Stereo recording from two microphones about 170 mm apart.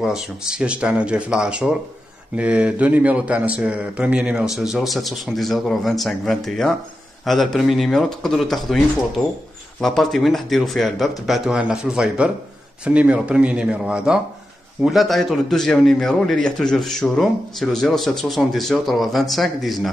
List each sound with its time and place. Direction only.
0.0 s a man's voice: 5° right (ahead or behind)